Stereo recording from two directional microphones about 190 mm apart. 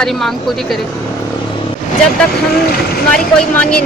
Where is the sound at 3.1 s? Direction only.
5° left (ahead or behind).